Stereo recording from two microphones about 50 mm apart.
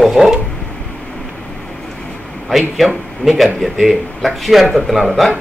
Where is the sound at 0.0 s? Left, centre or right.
Centre.